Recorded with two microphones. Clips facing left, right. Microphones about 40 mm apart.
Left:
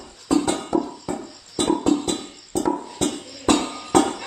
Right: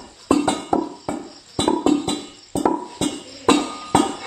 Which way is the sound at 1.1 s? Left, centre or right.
Right.